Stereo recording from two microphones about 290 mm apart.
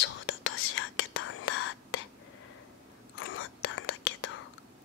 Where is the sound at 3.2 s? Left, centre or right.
Left.